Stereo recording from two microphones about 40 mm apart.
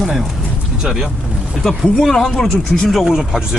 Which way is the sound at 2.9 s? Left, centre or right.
Centre.